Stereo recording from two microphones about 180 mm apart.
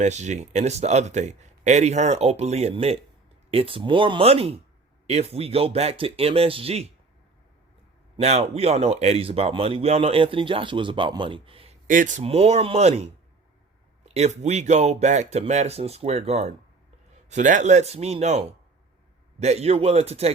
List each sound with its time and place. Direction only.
0.0 s speech: 40° right (ahead or behind)
8.1 s speech: 35° right (ahead or behind)
11.9 s speech: 45° right (ahead or behind)